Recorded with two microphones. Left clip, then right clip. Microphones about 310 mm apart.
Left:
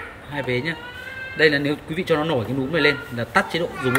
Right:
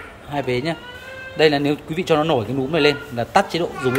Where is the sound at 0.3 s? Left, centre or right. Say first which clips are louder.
Right 3 dB; centre.